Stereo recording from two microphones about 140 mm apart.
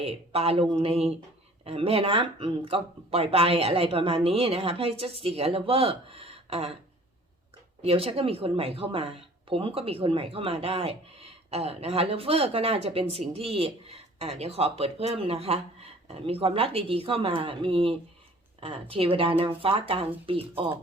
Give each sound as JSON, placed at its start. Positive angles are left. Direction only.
{"t": 0.0, "sound": "speech", "side_deg": -45}
{"t": 7.8, "sound": "speech", "side_deg": -45}